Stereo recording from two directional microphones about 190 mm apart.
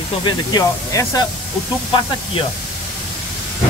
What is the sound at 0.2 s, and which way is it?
Speech, 25° left (ahead or behind).